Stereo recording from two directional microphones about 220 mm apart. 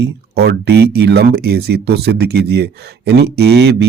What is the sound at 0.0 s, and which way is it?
Speech, 50° right (ahead or behind).